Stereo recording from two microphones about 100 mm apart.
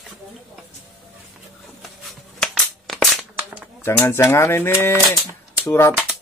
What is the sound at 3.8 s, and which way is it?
Speech, 25° left (ahead or behind).